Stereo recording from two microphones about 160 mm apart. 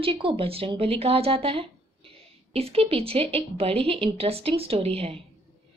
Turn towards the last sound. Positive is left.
turn(degrees=-40)  # may be behind; listen again after turning